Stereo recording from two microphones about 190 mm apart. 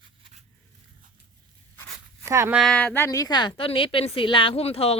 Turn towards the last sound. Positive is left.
turn(degrees=30)  # may be behind; listen again after turning